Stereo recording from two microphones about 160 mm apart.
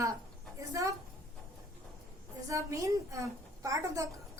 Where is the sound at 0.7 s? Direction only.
20° right (ahead or behind).